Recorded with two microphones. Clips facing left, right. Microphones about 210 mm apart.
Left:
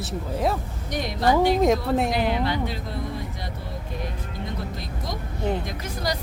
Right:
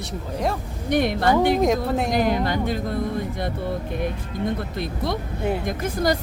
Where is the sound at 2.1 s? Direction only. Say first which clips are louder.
Right 3 dB; 45° right (ahead or behind).